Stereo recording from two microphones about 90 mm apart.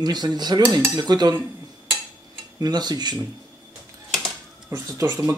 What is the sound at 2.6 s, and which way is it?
Speech, 50° right (ahead or behind).